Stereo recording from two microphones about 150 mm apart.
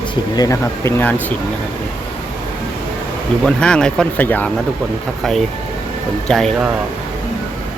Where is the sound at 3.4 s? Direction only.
5° left (ahead or behind).